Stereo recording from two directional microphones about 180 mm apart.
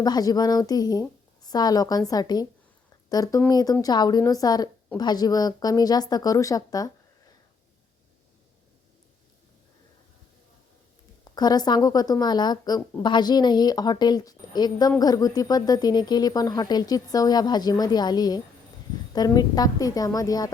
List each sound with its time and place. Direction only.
0.0 s a woman's voice: 20° left (ahead or behind)
11.3 s a woman's voice: 20° left (ahead or behind)